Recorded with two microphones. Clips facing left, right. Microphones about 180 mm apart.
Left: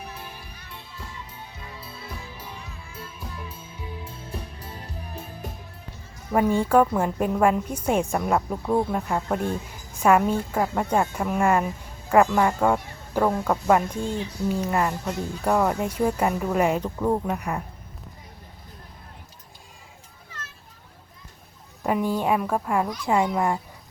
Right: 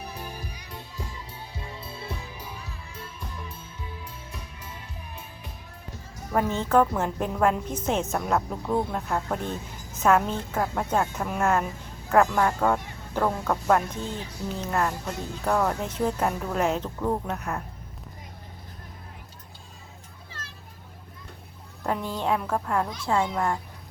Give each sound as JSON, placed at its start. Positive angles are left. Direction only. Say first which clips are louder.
{"t": 1.5, "sound": "music", "louder": "right 5 dB", "side_deg": -25}
{"t": 4.0, "sound": "music", "louder": "left 5 dB", "side_deg": 35}
{"t": 6.3, "sound": "a woman's voice", "louder": "left 3 dB", "side_deg": 10}
{"t": 21.8, "sound": "a woman's voice", "louder": "left 4 dB", "side_deg": 10}